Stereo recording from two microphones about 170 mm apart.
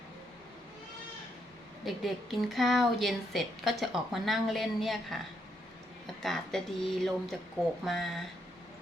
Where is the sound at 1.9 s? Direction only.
Centre (ahead or behind).